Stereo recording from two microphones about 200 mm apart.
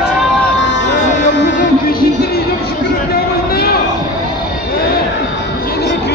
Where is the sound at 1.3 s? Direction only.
60° left (ahead or behind).